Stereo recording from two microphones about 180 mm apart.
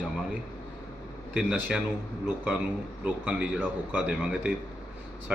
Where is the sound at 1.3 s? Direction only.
5° right (ahead or behind).